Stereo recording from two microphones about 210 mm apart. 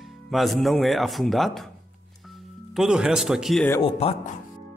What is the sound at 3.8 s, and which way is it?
Speech, 25° left (ahead or behind).